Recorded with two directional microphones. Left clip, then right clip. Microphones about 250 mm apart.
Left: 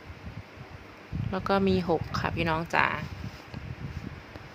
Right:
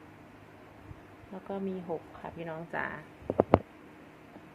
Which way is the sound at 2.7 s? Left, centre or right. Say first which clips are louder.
Left 10 dB; left.